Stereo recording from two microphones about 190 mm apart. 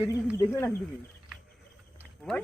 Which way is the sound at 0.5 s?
10° left (ahead or behind).